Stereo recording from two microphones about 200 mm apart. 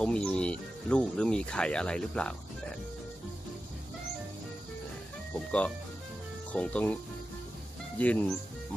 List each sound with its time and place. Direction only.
0.0 s speech: 5° left (ahead or behind)
6.5 s speech: 5° left (ahead or behind)
8.0 s speech: 5° left (ahead or behind)